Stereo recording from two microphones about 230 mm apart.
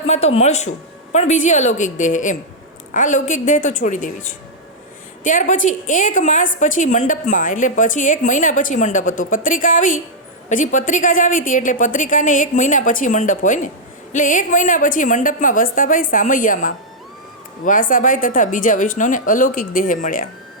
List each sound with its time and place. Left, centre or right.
0.1 s a woman's voice: left